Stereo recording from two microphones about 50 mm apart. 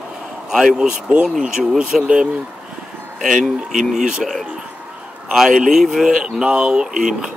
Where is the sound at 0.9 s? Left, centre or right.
Centre.